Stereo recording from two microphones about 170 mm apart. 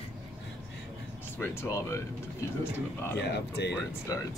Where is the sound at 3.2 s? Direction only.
85° left.